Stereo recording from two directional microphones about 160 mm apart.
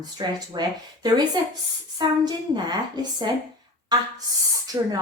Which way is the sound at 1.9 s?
25° right (ahead or behind).